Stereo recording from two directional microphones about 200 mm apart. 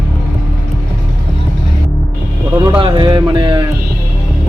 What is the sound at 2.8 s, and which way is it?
Music, 25° right (ahead or behind).